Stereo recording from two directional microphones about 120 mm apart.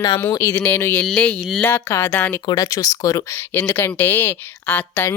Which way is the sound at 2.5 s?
30° left (ahead or behind).